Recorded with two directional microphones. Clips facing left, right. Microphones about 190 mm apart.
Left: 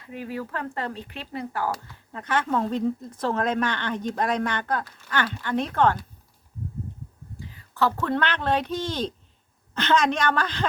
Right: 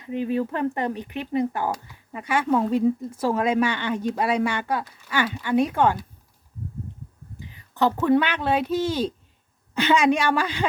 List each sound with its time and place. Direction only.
0.0 s speech: 20° right (ahead or behind)
7.3 s a sound: 20° right (ahead or behind)
7.9 s speech: 10° right (ahead or behind)